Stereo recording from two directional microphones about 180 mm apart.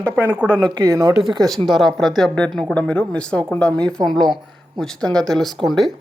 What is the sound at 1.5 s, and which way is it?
Speech, centre (ahead or behind).